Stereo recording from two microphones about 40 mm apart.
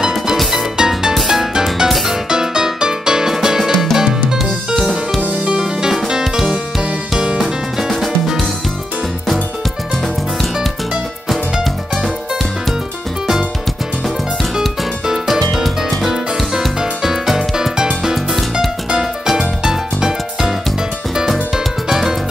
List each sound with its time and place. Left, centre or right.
0.0 s music: centre
0.7 s music: centre
1.9 s music: centre
2.2 s music: centre
3.9 s drum kit: centre
4.7 s music: centre
5.4 s music: centre
11.2 s music: centre
15.2 s music: centre
16.5 s music: centre
18.0 s music: centre
21.8 s music: centre